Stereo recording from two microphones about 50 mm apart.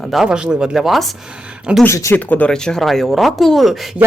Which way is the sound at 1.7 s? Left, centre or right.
Right.